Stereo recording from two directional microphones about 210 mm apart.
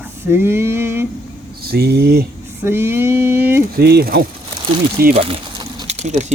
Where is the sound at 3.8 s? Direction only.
50° right (ahead or behind).